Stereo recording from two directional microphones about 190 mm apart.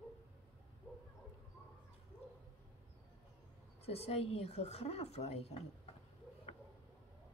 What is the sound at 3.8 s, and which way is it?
A woman's voice, 30° left (ahead or behind).